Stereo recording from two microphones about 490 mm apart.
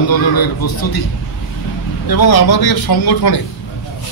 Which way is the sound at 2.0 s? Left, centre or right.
Left.